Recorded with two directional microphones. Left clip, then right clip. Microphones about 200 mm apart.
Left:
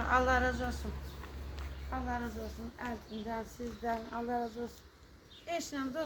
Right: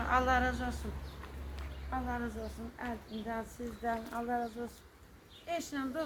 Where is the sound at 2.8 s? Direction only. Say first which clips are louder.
Even; 40° left (ahead or behind).